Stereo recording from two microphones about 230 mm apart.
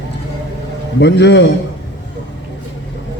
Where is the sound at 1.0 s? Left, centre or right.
Left.